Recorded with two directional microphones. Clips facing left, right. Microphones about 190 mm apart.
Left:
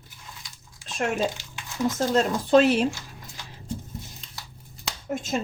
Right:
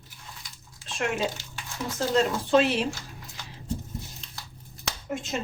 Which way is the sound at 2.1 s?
45° left (ahead or behind).